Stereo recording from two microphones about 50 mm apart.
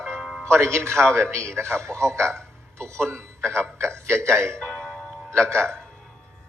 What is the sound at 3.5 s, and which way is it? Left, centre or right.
Speech, right.